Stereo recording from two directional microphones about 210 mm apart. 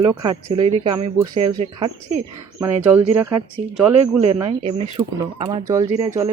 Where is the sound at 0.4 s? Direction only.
25° right (ahead or behind).